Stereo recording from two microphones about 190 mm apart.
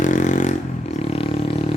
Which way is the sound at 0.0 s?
40° left (ahead or behind).